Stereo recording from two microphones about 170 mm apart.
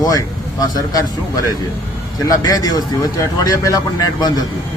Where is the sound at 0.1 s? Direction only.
20° left (ahead or behind).